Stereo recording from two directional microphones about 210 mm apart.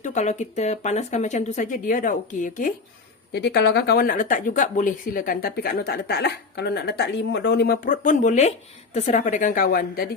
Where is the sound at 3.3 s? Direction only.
50° left (ahead or behind).